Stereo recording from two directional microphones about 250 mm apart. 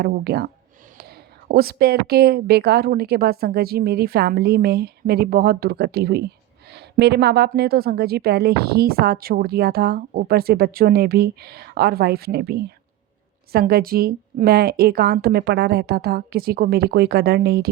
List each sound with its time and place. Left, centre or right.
0.0 s a woman's voice: right